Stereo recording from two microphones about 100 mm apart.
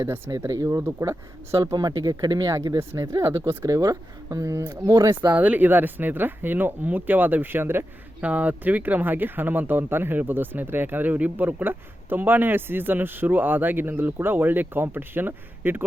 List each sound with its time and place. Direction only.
0.0 s speech: 35° right (ahead or behind)
1.7 s speech: 45° right (ahead or behind)
5.3 s speech: 15° right (ahead or behind)